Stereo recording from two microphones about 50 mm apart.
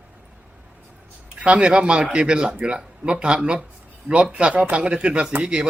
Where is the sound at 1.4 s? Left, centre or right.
Right.